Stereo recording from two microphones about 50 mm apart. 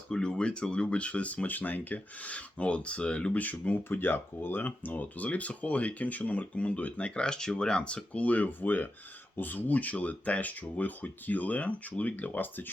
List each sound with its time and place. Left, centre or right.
0.1 s speech: centre
3.3 s speech: left
3.8 s speech: left; by 8.2 s centre
8.2 s speech: left